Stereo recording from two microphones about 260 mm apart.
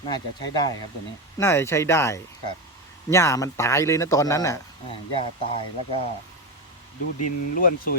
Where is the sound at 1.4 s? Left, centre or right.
Centre.